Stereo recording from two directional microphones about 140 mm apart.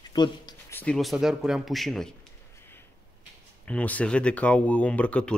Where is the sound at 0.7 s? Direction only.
15° left (ahead or behind).